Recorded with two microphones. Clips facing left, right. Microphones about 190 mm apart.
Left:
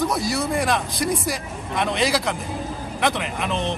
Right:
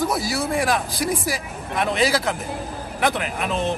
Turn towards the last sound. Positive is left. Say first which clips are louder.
# right 1 dB
turn(degrees=0)  # may be behind; listen again after turning